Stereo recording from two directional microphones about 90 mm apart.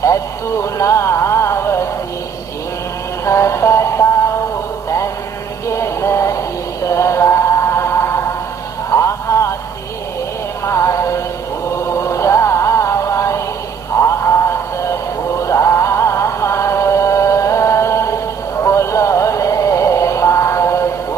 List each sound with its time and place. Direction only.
0.7 s music: 35° left (ahead or behind)
3.3 s mantra: 30° left (ahead or behind)
5.7 s music: 35° left (ahead or behind)
8.9 s a sound: 35° left (ahead or behind)
10.6 s music: 35° left (ahead or behind)
14.0 s a sound: 30° left (ahead or behind)
15.4 s music: 35° left (ahead or behind)